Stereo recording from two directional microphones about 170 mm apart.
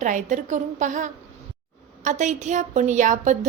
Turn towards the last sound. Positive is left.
turn(degrees=-45)  # may be behind; listen again after turning